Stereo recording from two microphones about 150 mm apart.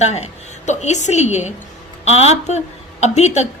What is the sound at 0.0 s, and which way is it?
A woman's voice, 50° left (ahead or behind).